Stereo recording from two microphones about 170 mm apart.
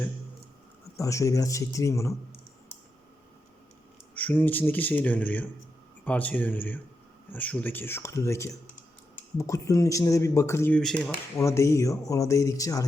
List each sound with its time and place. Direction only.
0.9 s speech: 20° left (ahead or behind)
4.1 s speech: 10° left (ahead or behind)
10.8 s speech: 5° left (ahead or behind)
11.3 s speech: 15° left (ahead or behind)